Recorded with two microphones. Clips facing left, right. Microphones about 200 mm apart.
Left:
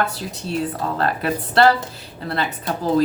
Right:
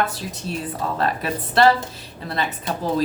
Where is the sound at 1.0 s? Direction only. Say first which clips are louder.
Left 3 dB; 60° left (ahead or behind).